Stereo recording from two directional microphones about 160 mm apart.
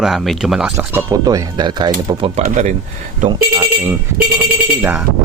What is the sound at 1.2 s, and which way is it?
Speech, 25° right (ahead or behind).